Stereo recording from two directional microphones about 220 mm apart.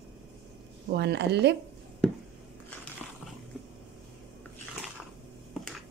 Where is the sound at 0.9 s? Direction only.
50° right (ahead or behind).